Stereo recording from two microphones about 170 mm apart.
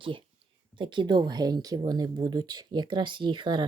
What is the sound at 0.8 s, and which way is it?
Speech, 30° right (ahead or behind).